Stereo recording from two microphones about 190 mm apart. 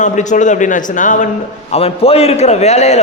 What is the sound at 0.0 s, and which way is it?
A man's voice, 40° left (ahead or behind).